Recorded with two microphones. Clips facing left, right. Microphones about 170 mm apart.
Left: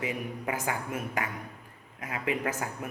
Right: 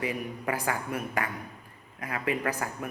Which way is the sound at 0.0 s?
20° left (ahead or behind).